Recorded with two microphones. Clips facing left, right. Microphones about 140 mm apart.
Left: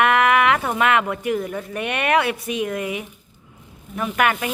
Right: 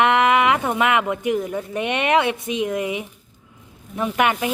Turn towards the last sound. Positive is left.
turn(degrees=-20)  # may be behind; listen again after turning